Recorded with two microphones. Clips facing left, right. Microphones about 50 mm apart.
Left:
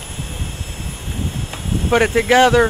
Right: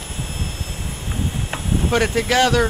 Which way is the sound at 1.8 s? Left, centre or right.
Centre.